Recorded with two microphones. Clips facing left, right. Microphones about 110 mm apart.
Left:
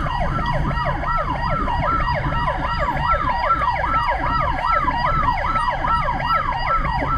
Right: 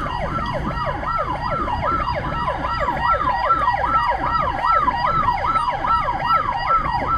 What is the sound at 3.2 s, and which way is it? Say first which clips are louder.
Emergency vehicle: right 1 dB; 20° right (ahead or behind).